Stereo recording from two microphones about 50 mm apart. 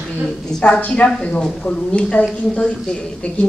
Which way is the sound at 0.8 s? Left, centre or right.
Left.